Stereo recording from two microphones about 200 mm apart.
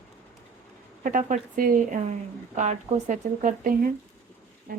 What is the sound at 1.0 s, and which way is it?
Speech, 40° right (ahead or behind).